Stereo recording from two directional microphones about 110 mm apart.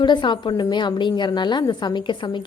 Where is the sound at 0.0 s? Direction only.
45° left (ahead or behind).